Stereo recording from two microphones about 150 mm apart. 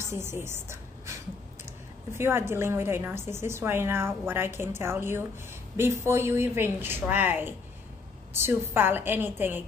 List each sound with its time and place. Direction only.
0.0 s a woman's voice: 15° right (ahead or behind)
2.1 s a woman's voice: 15° right (ahead or behind)